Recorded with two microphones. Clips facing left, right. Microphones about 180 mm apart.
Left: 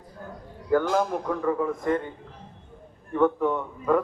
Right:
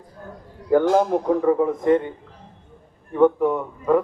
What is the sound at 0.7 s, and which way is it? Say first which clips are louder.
A man's voice: right 6 dB; 25° right (ahead or behind).